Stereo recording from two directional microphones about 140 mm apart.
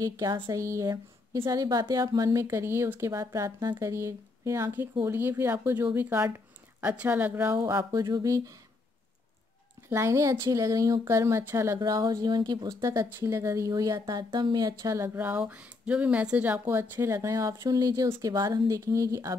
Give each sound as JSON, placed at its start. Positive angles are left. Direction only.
{"t": 0.0, "sound": "speech", "side_deg": -25}
{"t": 9.8, "sound": "speech", "side_deg": -20}